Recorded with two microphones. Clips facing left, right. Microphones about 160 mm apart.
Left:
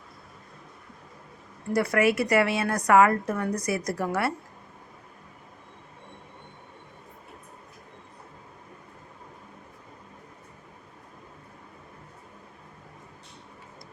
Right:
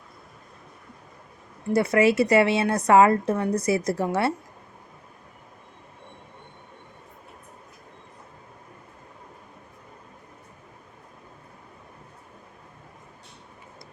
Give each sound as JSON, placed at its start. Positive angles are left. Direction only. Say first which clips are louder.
{"t": 1.7, "sound": "a woman's voice", "louder": "right 3 dB", "side_deg": -25}